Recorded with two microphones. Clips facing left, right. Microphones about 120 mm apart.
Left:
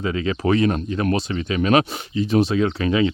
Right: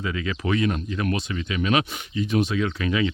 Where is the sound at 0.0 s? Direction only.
35° left (ahead or behind).